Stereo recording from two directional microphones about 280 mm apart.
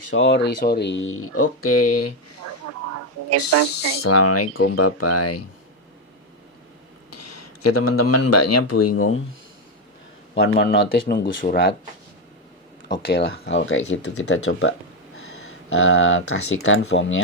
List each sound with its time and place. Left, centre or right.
0.1 s speech: left
2.5 s a sound: right
3.2 s speech: right
4.0 s speech: left
7.1 s speech: left
10.3 s speech: left
13.1 s speech: left